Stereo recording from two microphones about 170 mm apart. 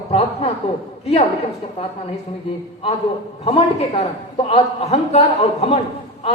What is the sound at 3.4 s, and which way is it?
A man's voice, 35° left (ahead or behind).